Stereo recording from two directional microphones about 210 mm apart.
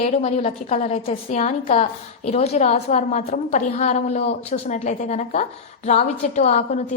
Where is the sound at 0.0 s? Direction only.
30° left (ahead or behind).